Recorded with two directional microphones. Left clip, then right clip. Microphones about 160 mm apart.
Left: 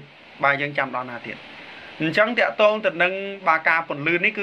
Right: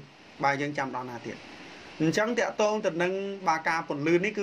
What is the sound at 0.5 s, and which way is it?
Speech, 50° right (ahead or behind).